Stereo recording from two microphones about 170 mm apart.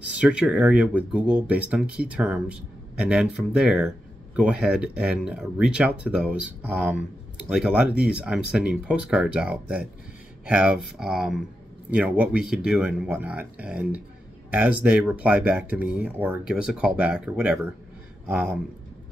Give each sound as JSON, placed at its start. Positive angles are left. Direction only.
{"t": 0.2, "sound": "speech", "side_deg": -5}